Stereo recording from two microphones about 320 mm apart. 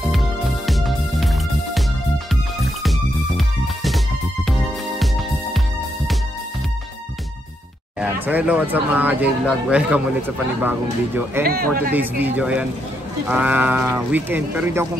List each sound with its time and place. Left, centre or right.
0.1 s music: centre
8.0 s speech: centre
11.4 s a man's voice: right
11.9 s speech: centre